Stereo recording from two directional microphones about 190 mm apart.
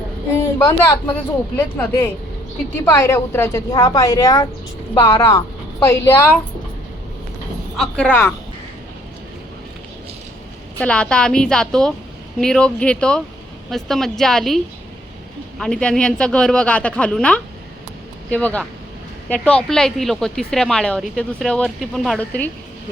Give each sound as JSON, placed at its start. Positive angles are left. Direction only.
{"t": 0.6, "sound": "a woman's voice", "side_deg": 15}
{"t": 7.8, "sound": "speech", "side_deg": 5}
{"t": 10.8, "sound": "a woman's voice", "side_deg": 5}